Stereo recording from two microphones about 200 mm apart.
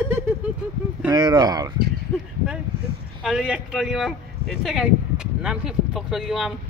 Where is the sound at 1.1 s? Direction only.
20° right (ahead or behind).